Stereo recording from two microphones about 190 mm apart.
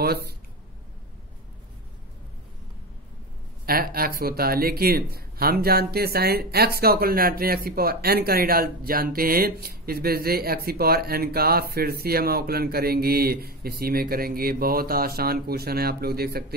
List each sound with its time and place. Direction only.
0.0 s speech: 55° right (ahead or behind)
3.6 s speech: 50° right (ahead or behind)